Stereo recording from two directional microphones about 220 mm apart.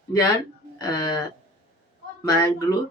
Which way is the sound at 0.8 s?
15° left (ahead or behind).